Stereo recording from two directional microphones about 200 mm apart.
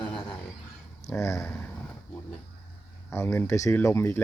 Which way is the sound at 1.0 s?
15° left (ahead or behind).